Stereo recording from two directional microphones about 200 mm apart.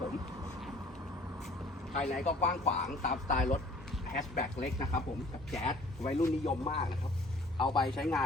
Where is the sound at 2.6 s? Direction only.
35° left (ahead or behind).